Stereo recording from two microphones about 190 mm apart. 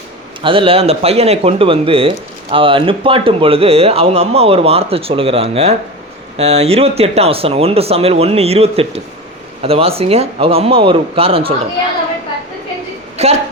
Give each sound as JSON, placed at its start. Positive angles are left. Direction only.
{"t": 0.4, "sound": "a man's voice", "side_deg": -30}
{"t": 13.2, "sound": "a man's voice", "side_deg": -35}